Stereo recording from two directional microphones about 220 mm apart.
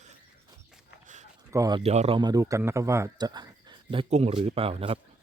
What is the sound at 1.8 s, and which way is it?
A man's voice, 30° right (ahead or behind).